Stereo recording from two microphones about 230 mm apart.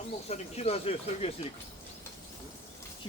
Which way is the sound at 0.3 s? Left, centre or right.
Left.